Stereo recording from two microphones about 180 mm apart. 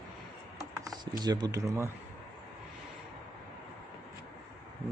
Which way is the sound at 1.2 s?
20° right (ahead or behind).